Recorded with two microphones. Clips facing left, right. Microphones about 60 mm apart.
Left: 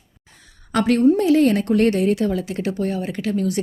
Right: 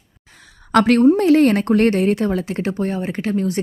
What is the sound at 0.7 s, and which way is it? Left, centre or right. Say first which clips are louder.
Speech: right 3 dB; right.